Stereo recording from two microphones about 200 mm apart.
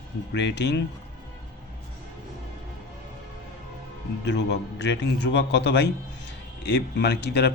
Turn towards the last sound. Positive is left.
turn(degrees=55)  # may be behind; listen again after turning